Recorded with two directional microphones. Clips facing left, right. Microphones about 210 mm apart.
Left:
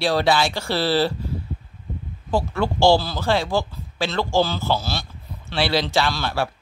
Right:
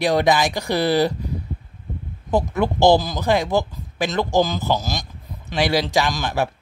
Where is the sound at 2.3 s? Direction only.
20° right (ahead or behind).